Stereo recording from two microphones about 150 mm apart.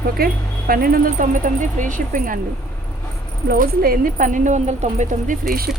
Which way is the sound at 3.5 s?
80° right.